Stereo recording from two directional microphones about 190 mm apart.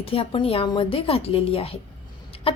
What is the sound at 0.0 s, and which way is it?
A woman's voice, 30° left (ahead or behind).